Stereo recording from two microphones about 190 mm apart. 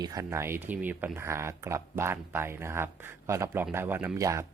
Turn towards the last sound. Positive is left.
turn(degrees=-15)  # may be behind; listen again after turning